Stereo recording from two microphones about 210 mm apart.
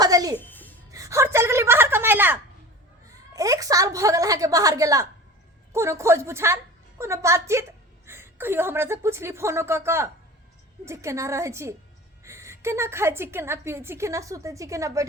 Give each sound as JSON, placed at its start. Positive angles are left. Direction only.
{"t": 0.0, "sound": "music", "side_deg": -15}
{"t": 0.3, "sound": "music", "side_deg": 10}
{"t": 0.9, "sound": "a sound", "side_deg": -15}
{"t": 3.3, "sound": "a woman's voice", "side_deg": -15}